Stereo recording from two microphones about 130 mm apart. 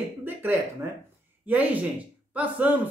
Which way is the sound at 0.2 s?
15° right (ahead or behind).